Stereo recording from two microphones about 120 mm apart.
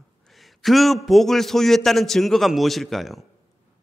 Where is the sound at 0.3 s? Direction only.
Centre (ahead or behind).